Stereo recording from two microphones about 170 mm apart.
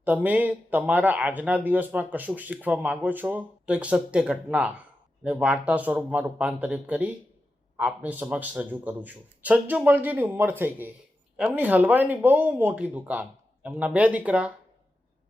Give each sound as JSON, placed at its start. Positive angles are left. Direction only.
{"t": 0.0, "sound": "speech", "side_deg": -10}